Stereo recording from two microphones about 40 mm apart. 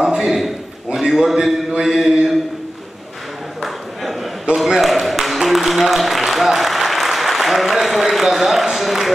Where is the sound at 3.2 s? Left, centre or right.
Centre.